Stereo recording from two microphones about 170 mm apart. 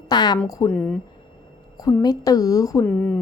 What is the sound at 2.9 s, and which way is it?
Speech, 10° left (ahead or behind).